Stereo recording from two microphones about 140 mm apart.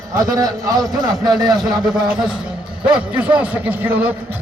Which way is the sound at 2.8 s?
10° right (ahead or behind).